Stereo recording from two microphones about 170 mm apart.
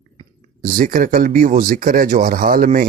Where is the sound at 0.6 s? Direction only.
55° right (ahead or behind).